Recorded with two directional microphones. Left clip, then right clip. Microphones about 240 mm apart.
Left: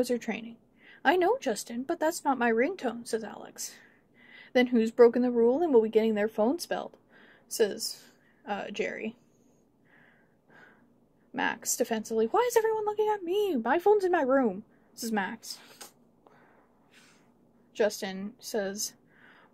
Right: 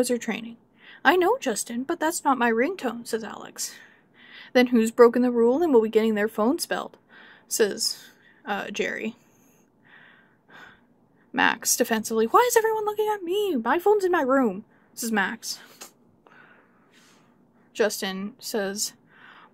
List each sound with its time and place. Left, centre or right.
0.0 s a woman's voice: centre
11.3 s speech: centre
17.7 s a woman's voice: centre